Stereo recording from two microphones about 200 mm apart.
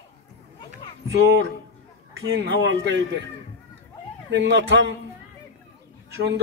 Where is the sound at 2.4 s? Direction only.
65° right (ahead or behind).